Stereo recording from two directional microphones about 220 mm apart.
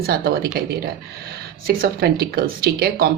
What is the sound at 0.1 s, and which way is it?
Speech, 45° right (ahead or behind).